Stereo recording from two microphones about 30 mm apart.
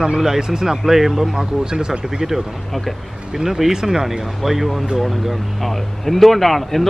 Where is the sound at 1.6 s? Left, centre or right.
Right.